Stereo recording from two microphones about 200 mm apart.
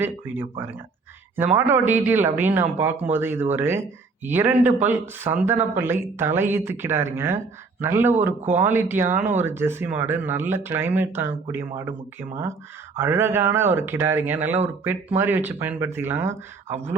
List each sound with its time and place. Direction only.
1.4 s speech: 10° right (ahead or behind)
9.1 s speech: 40° right (ahead or behind)
9.4 s speech: 10° right (ahead or behind)
13.0 s speech: 10° right (ahead or behind)